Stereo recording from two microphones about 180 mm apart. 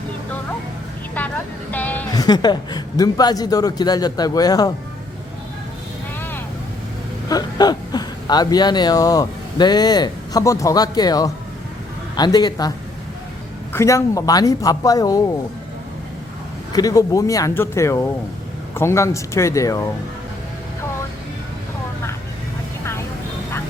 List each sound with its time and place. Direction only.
1.7 s a sound: 10° left (ahead or behind)
2.0 s speech: 20° left (ahead or behind)
7.3 s speech: 20° left (ahead or behind)
13.7 s speech: 15° left (ahead or behind)
16.7 s speech: 20° left (ahead or behind)
22.8 s vehicle: 15° left (ahead or behind)